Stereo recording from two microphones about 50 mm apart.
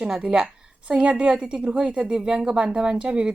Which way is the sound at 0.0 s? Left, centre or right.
Right.